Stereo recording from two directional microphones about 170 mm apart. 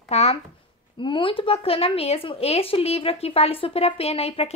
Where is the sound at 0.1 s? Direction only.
40° left (ahead or behind).